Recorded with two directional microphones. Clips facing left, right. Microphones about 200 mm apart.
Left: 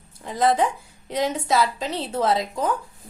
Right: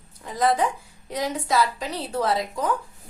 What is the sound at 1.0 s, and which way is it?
A woman's voice, 25° left (ahead or behind).